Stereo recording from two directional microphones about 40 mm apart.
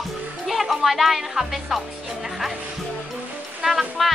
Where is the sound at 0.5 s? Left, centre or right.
Centre.